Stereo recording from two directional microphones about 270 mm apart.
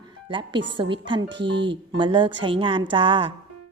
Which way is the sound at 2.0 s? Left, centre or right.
Centre.